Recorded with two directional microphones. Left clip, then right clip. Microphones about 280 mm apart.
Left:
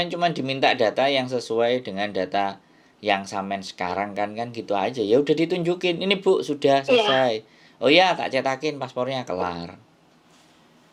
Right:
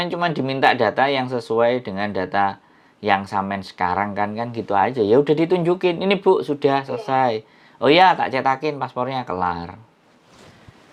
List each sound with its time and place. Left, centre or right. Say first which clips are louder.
0.0 s speech: right 2 dB; centre